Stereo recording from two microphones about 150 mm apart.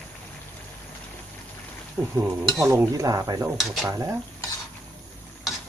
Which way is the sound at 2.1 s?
15° right (ahead or behind).